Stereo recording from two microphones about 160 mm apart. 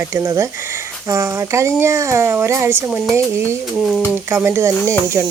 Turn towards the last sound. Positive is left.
turn(degrees=-20)  # may be behind; listen again after turning